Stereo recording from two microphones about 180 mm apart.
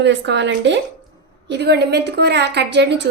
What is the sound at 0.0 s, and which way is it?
A woman's voice, 75° right (ahead or behind).